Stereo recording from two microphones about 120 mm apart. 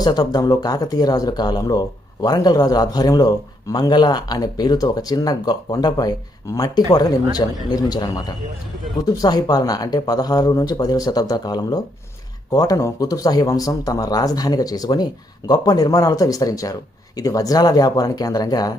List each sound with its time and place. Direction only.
0.0 s speech: 35° left (ahead or behind)